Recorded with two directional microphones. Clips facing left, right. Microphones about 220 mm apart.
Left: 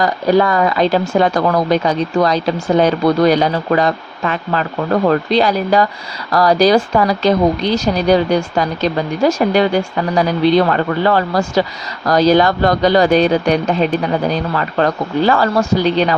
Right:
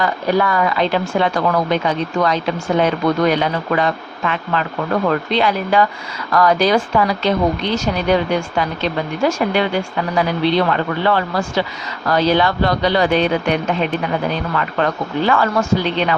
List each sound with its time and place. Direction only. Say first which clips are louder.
0.0 s speech: left 4 dB; 40° left (ahead or behind)